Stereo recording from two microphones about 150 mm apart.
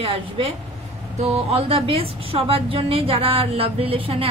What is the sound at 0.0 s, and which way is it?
A woman's voice, 40° right (ahead or behind).